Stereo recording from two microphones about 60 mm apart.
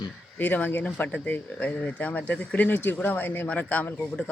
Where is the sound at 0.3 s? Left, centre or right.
Left.